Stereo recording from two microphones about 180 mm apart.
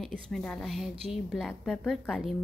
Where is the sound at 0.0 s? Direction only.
Centre (ahead or behind).